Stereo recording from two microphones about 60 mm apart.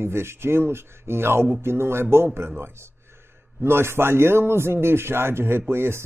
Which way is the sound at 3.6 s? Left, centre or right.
Right.